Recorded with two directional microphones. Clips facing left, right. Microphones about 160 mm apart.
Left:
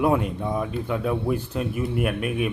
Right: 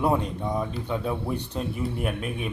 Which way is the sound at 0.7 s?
25° right (ahead or behind).